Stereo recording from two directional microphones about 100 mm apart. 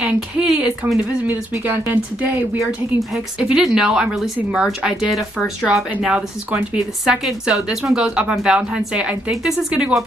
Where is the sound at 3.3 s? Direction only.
10° right (ahead or behind).